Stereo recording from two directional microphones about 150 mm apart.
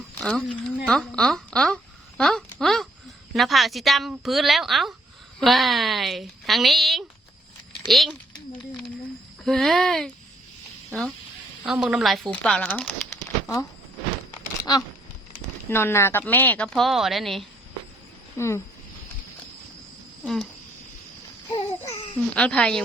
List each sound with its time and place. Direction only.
0.2 s speech: 5° left (ahead or behind)
9.4 s speech: centre (ahead or behind)
11.6 s a woman's voice: 5° right (ahead or behind)
14.3 s a sound: 25° left (ahead or behind)
15.7 s a woman's voice: 15° left (ahead or behind); by 17.4 s centre (ahead or behind)
18.3 s a woman's voice: 20° left (ahead or behind)
20.2 s speech: centre (ahead or behind)
22.1 s a woman's voice: 5° left (ahead or behind)